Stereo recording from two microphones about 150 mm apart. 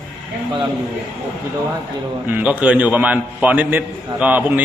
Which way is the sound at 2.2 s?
10° right (ahead or behind).